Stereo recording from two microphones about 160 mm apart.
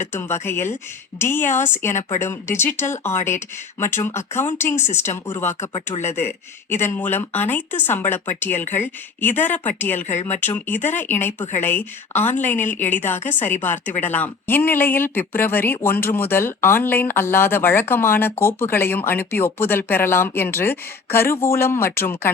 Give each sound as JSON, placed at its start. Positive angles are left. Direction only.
{"t": 0.1, "sound": "speech", "side_deg": 15}
{"t": 5.5, "sound": "speech", "side_deg": 40}
{"t": 6.1, "sound": "speech", "side_deg": 15}